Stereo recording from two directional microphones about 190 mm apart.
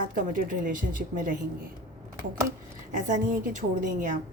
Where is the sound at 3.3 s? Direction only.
45° right (ahead or behind).